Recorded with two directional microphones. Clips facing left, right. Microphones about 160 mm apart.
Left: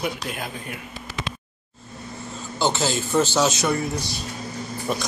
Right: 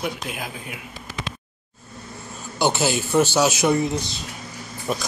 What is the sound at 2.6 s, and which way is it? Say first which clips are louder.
Speech: right 2 dB; 10° right (ahead or behind).